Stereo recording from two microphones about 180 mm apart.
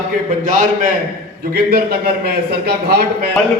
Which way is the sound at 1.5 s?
55° right (ahead or behind).